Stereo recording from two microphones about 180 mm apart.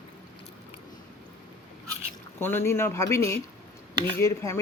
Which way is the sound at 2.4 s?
10° left (ahead or behind).